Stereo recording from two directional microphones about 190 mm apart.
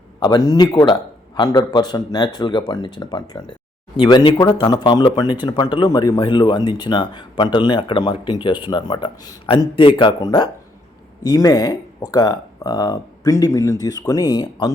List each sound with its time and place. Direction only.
0.2 s speech: 20° left (ahead or behind)